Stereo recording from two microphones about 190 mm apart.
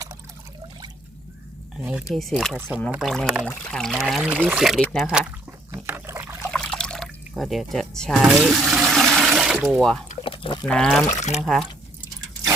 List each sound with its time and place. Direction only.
1.7 s speech: 5° right (ahead or behind)
2.6 s speech: 10° right (ahead or behind)
2.9 s speech: centre (ahead or behind)
4.0 s a sound: 10° right (ahead or behind)
6.5 s water: 5° left (ahead or behind)
9.6 s speech: 5° left (ahead or behind)
10.1 s a sound: 30° left (ahead or behind)
10.7 s speech: centre (ahead or behind)